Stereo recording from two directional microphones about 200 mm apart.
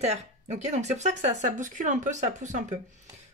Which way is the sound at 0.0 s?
35° right (ahead or behind).